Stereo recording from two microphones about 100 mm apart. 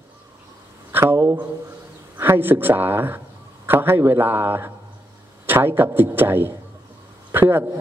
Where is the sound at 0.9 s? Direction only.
20° right (ahead or behind).